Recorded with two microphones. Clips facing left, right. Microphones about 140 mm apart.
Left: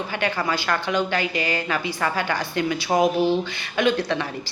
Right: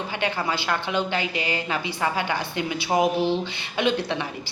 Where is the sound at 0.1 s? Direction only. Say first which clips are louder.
Left 2 dB; 20° right (ahead or behind).